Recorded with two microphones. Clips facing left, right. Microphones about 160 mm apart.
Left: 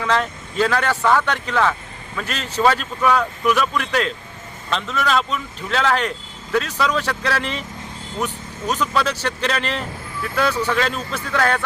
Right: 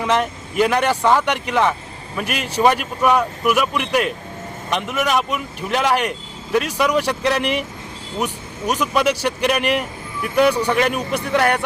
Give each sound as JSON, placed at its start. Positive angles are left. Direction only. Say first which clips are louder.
{"t": 0.0, "sound": "speech", "louder": "right 2 dB", "side_deg": -15}